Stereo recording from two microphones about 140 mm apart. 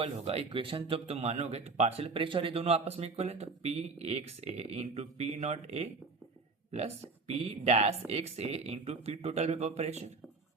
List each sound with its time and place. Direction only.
0.0 s speech: 45° right (ahead or behind)